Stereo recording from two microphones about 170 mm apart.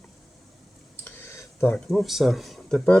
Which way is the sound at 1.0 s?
15° left (ahead or behind).